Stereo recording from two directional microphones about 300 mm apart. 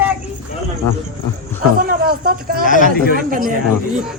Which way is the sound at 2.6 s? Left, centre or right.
Left.